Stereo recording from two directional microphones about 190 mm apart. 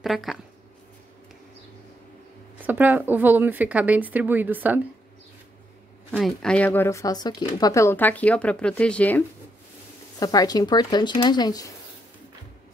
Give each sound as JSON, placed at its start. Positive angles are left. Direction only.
{"t": 0.0, "sound": "speech", "side_deg": 0}
{"t": 2.6, "sound": "speech", "side_deg": -10}
{"t": 6.1, "sound": "speech", "side_deg": 0}
{"t": 10.1, "sound": "speech", "side_deg": 20}